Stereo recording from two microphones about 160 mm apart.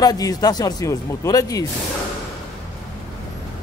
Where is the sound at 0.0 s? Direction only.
25° left (ahead or behind).